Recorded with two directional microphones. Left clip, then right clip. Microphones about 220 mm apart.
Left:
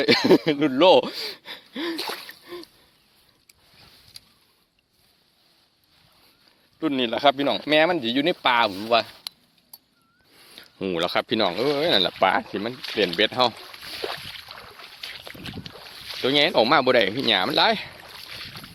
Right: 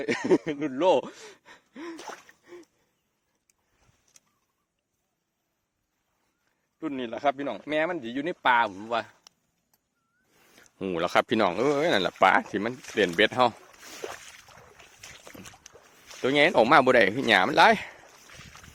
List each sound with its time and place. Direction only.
0.0 s speech: 20° left (ahead or behind)
2.0 s splash: 15° left (ahead or behind)
6.7 s speech: 15° left (ahead or behind)
10.5 s speech: 10° right (ahead or behind); by 13.5 s 30° right (ahead or behind)
14.0 s a sound: 15° right (ahead or behind)
15.0 s boat: 20° right (ahead or behind)
16.2 s speech: 25° right (ahead or behind)